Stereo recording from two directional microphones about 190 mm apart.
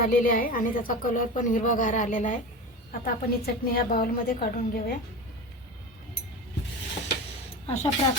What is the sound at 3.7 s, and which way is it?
A woman's voice, 50° left (ahead or behind).